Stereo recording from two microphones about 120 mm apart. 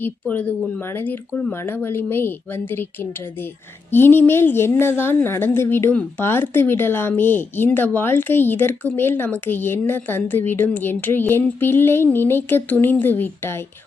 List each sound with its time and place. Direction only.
0.0 s a woman's voice: 15° left (ahead or behind)